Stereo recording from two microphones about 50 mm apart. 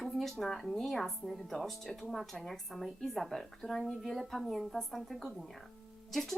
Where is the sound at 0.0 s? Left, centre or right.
Centre.